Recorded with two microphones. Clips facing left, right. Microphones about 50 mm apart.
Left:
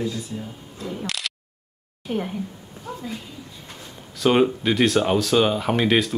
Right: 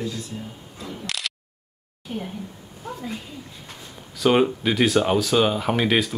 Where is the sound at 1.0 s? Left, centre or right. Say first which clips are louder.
Right 3 dB; centre.